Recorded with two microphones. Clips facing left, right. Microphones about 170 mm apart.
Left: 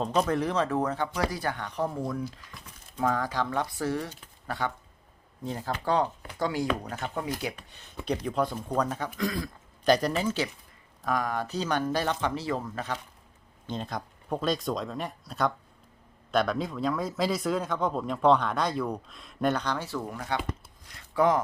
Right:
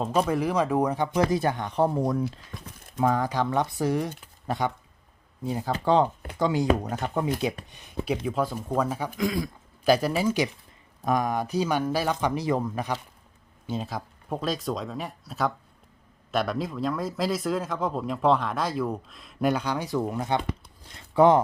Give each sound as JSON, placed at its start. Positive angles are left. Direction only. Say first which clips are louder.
{"t": 0.0, "sound": "speech", "louder": "right 2 dB", "side_deg": -10}
{"t": 3.0, "sound": "speech", "louder": "right 4 dB", "side_deg": -20}
{"t": 5.8, "sound": "speech", "louder": "right 5 dB", "side_deg": -25}
{"t": 7.7, "sound": "speech", "louder": "right 2 dB", "side_deg": -15}
{"t": 8.0, "sound": "speech", "louder": "right 1 dB", "side_deg": -5}